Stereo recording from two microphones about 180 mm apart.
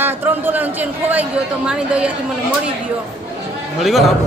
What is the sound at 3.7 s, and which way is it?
Speech, centre (ahead or behind).